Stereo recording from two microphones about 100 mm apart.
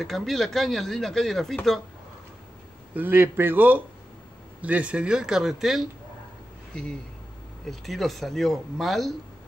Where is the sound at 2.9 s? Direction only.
20° right (ahead or behind); by 5.8 s centre (ahead or behind).